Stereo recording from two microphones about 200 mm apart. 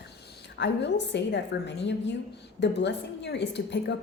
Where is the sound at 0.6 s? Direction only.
60° left (ahead or behind).